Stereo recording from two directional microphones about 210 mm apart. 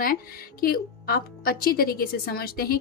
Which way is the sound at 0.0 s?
45° left (ahead or behind).